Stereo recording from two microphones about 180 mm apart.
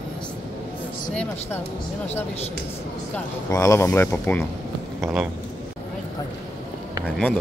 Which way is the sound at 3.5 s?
15° left (ahead or behind).